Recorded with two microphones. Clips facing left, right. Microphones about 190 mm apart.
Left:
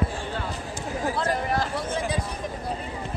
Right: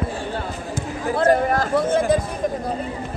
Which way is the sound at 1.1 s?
50° right (ahead or behind).